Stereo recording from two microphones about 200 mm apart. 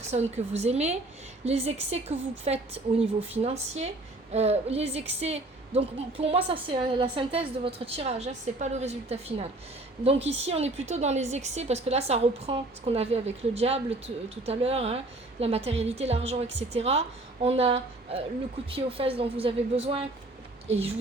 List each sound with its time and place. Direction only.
0.1 s a woman's voice: 35° right (ahead or behind)